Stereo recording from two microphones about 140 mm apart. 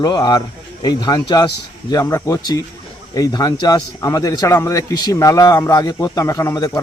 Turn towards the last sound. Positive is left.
turn(degrees=25)  # may be behind; listen again after turning